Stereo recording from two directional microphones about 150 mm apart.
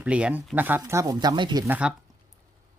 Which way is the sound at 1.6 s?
10° right (ahead or behind).